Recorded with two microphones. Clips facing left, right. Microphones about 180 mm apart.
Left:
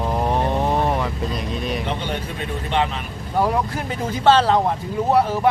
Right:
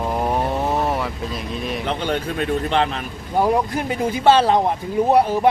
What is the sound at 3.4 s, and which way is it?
Speech, 15° right (ahead or behind).